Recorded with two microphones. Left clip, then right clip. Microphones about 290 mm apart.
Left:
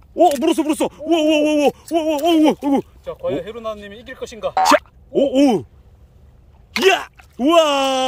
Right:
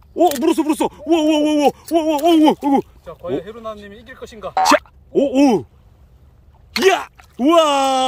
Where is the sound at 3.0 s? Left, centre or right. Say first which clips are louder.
Left 2 dB; left.